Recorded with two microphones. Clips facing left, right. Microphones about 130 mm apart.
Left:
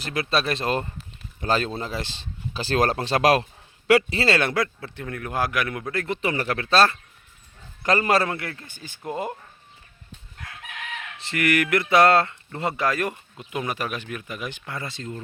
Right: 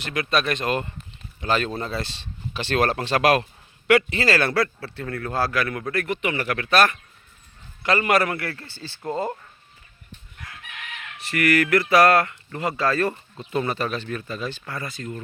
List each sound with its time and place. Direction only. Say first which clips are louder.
0.0 s speech: right 1 dB; 35° left (ahead or behind); by 9.2 s 15° left (ahead or behind)
11.2 s speech: right 2 dB; 25° left (ahead or behind)